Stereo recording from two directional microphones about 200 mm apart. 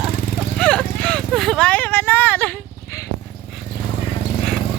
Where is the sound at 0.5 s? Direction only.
5° left (ahead or behind).